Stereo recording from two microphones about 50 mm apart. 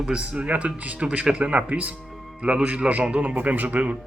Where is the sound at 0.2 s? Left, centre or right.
Right.